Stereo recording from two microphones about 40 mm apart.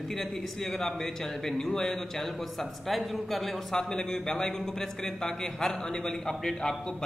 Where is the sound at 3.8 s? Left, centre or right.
Centre.